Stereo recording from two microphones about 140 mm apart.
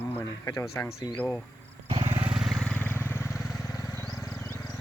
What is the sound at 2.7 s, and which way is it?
Vehicle, 10° left (ahead or behind).